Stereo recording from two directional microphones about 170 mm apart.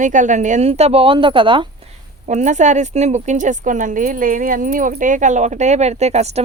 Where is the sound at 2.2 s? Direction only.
45° right (ahead or behind).